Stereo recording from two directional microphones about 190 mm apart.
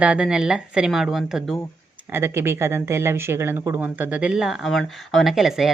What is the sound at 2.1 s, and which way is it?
Speech, 15° right (ahead or behind).